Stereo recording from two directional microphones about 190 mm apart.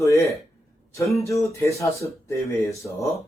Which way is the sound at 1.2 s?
15° left (ahead or behind).